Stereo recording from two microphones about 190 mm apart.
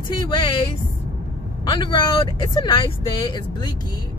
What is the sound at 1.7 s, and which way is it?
Speech, 25° left (ahead or behind).